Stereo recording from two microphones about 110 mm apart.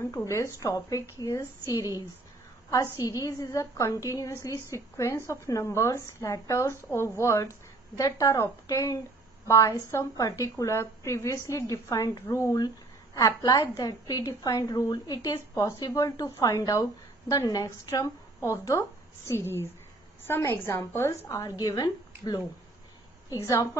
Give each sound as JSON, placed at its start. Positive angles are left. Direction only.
{"t": 0.1, "sound": "a woman's voice", "side_deg": 30}
{"t": 21.3, "sound": "a woman's voice", "side_deg": 35}
{"t": 23.5, "sound": "a woman's voice", "side_deg": 30}